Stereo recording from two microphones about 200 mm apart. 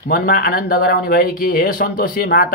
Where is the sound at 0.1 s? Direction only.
45° left (ahead or behind).